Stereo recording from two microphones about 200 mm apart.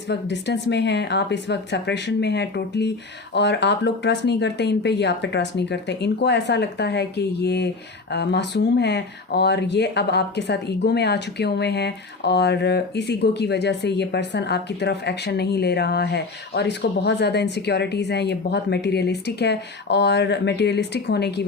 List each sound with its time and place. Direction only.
0.1 s speech: 60° left (ahead or behind)